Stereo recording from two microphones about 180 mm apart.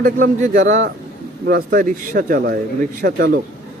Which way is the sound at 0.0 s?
45° right (ahead or behind).